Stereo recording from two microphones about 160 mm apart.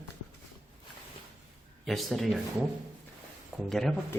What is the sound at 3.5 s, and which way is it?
Speech, centre (ahead or behind).